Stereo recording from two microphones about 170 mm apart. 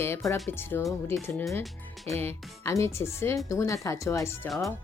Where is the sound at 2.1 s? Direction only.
15° left (ahead or behind).